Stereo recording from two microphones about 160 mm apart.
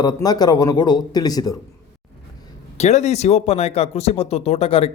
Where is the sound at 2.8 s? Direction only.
45° left (ahead or behind).